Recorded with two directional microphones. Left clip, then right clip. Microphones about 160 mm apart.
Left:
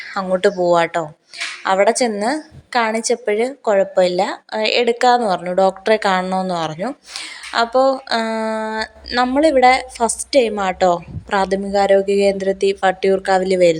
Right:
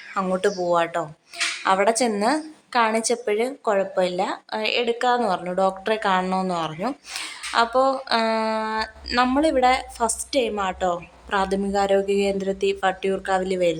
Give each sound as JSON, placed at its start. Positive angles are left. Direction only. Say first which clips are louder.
{"t": 0.1, "sound": "a woman's voice", "louder": "left 6 dB", "side_deg": 25}